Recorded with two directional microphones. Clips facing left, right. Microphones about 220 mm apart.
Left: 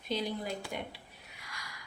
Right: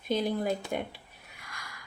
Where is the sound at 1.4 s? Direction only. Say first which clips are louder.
Right 2 dB; 50° right (ahead or behind).